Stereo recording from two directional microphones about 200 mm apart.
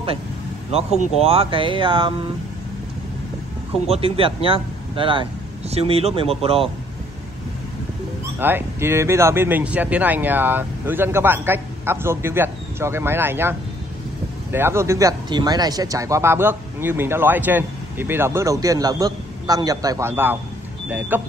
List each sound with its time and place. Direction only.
0.7 s speech: 30° right (ahead or behind)
3.8 s speech: 30° right (ahead or behind)
8.4 s speech: 10° right (ahead or behind)